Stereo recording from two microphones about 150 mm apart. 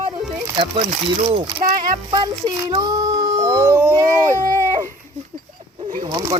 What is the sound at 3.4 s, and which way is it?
Howl, 20° right (ahead or behind).